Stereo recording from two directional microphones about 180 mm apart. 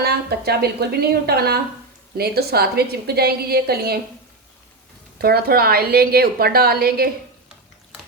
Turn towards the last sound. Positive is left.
turn(degrees=-60)  # may be behind; listen again after turning